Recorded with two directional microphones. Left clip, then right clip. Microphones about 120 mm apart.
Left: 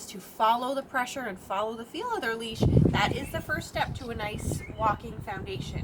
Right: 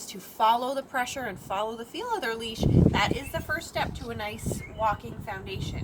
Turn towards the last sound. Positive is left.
turn(degrees=-10)  # may be behind; listen again after turning